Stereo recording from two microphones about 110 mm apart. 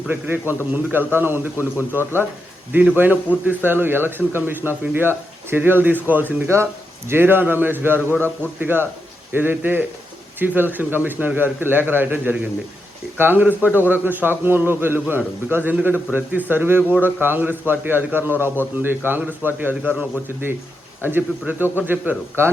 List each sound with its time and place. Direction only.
0.1 s a man's voice: 20° right (ahead or behind)
21.0 s a man's voice: 20° right (ahead or behind)